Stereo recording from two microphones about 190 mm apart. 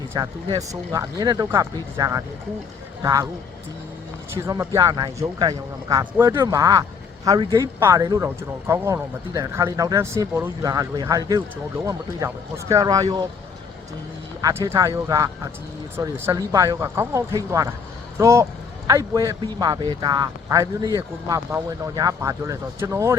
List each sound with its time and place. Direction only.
0.1 s speech: 20° right (ahead or behind)
4.4 s speech: 15° right (ahead or behind)
14.4 s speech: 15° right (ahead or behind)